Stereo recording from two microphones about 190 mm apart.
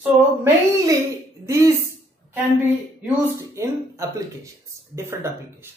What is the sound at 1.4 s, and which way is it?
Speech, 15° right (ahead or behind).